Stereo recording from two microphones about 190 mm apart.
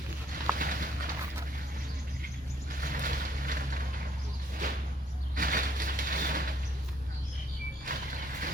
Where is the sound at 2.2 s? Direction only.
50° right (ahead or behind).